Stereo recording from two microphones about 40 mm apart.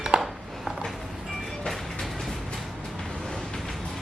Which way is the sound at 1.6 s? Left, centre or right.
Centre.